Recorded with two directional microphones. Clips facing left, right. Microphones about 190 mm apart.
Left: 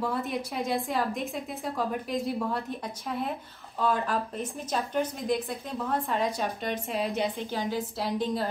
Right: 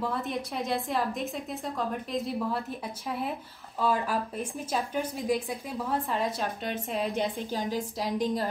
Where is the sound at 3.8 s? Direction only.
5° right (ahead or behind).